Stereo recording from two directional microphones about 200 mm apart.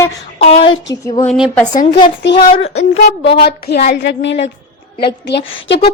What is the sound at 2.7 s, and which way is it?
A woman's voice, 65° left (ahead or behind).